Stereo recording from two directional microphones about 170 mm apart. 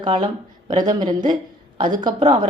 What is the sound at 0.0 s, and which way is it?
A woman's voice, 30° right (ahead or behind).